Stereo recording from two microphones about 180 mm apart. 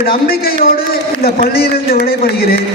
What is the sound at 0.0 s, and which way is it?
A man's voice, 55° left (ahead or behind).